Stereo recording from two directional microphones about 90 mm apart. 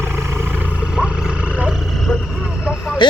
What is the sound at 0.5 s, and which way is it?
Vehicle, 15° right (ahead or behind).